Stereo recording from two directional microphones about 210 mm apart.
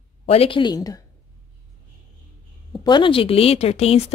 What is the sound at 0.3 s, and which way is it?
Speech, 25° left (ahead or behind).